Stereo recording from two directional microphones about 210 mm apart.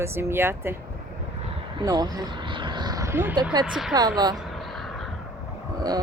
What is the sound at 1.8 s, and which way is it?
Vehicle, 20° right (ahead or behind).